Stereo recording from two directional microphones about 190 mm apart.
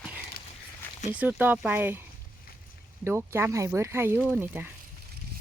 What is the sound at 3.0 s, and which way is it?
Speech, 15° right (ahead or behind).